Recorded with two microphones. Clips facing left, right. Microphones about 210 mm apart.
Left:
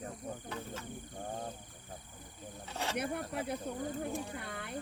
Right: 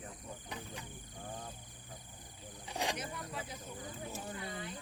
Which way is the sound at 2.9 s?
60° left (ahead or behind).